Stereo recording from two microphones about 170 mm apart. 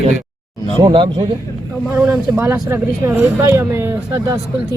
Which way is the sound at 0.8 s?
30° right (ahead or behind).